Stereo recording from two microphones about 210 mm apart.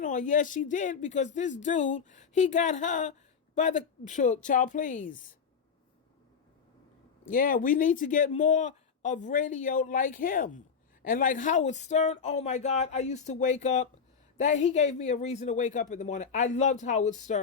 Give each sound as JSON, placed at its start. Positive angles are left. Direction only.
{"t": 0.0, "sound": "speech", "side_deg": 40}
{"t": 7.3, "sound": "speech", "side_deg": 40}